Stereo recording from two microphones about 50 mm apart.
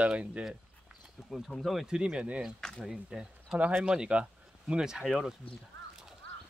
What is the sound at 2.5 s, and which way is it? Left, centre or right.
Speech, centre.